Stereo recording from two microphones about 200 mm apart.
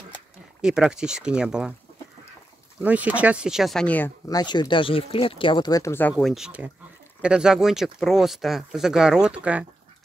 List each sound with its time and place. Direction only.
0.6 s speech: 5° right (ahead or behind)
2.8 s speech: 5° right (ahead or behind)
4.3 s speech: 20° left (ahead or behind); by 9.7 s 5° right (ahead or behind)